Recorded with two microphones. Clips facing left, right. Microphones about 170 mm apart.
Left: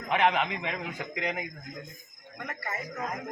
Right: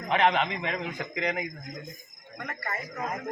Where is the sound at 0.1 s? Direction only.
5° left (ahead or behind).